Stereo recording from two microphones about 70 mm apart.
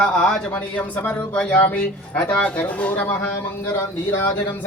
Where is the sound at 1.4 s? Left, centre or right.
Centre.